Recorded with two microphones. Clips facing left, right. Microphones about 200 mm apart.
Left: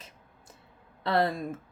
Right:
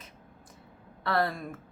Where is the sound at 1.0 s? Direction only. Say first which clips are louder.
Left 2 dB; 20° left (ahead or behind).